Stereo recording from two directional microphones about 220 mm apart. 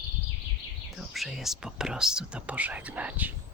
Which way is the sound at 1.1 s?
Centre (ahead or behind).